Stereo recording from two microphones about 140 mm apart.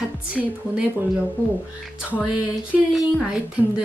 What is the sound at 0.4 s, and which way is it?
Speech, centre (ahead or behind).